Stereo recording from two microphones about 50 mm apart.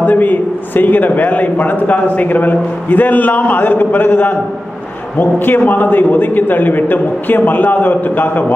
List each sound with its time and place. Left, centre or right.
0.0 s a man's voice: left